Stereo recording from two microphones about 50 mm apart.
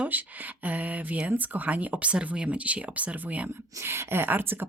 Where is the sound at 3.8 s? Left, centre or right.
Right.